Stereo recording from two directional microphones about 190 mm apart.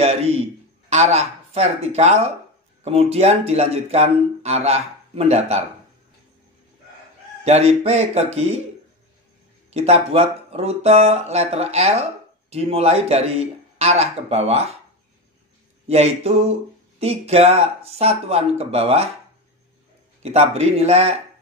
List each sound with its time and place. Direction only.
0.0 s a man's voice: 35° right (ahead or behind)
7.4 s speech: 35° right (ahead or behind)
9.7 s speech: 35° right (ahead or behind)
15.9 s speech: 35° right (ahead or behind)
20.2 s speech: 35° right (ahead or behind)